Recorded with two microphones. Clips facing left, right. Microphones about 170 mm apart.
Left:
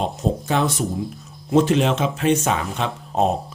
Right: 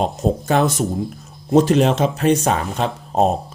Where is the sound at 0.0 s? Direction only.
45° right (ahead or behind).